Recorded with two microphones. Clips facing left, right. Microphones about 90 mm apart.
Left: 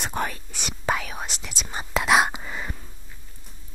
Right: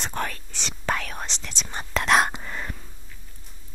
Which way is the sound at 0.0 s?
10° left (ahead or behind).